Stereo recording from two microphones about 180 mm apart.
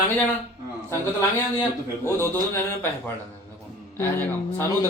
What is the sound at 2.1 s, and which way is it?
Speech, 15° left (ahead or behind).